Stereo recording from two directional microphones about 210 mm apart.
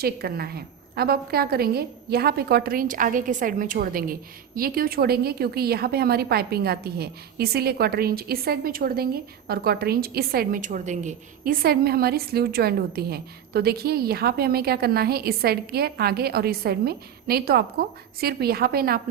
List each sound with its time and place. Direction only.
0.0 s a woman's voice: 45° right (ahead or behind)